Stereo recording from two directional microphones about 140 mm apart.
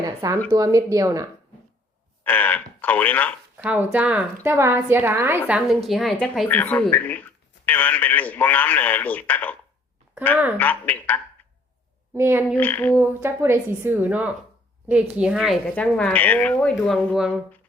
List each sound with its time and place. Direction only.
0.0 s a sound: 25° right (ahead or behind)
0.5 s speech: 25° right (ahead or behind)
2.2 s speech: 10° left (ahead or behind)
3.6 s a woman's voice: 10° right (ahead or behind); by 9.6 s 10° left (ahead or behind)
10.6 s speech: 10° left (ahead or behind)
12.1 s a woman's voice: 15° right (ahead or behind)
12.5 s speech: 10° left (ahead or behind)
13.0 s a woman's voice: 15° right (ahead or behind)
15.6 s speech: 10° left (ahead or behind)
16.7 s speech: centre (ahead or behind)